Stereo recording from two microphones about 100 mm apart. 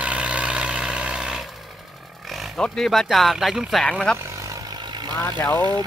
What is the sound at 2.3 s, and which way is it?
Speech, 5° left (ahead or behind).